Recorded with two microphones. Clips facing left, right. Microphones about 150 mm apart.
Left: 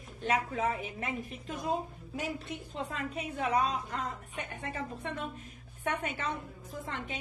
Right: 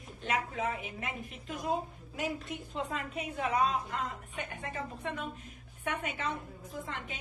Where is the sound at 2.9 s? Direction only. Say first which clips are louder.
Even; 40° left (ahead or behind).